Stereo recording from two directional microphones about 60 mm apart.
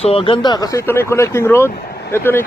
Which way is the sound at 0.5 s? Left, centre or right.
Left.